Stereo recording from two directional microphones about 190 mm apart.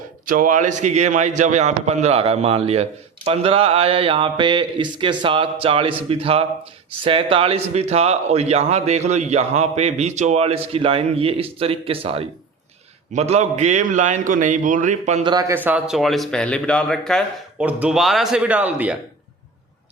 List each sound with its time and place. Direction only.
0.3 s a man's voice: 45° right (ahead or behind)
3.2 s mantra: 30° right (ahead or behind)
6.1 s a man's voice: 30° right (ahead or behind)
15.2 s speech: 20° right (ahead or behind)